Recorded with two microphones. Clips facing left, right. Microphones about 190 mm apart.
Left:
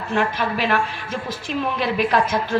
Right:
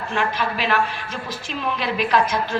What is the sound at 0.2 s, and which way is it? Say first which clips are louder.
Speech: left 2 dB; 50° left (ahead or behind).